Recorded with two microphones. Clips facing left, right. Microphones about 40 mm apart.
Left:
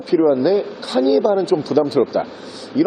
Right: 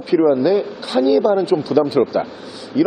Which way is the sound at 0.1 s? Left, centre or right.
Centre.